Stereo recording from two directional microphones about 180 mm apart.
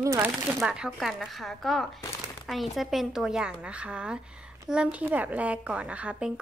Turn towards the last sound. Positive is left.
turn(degrees=-5)  # may be behind; listen again after turning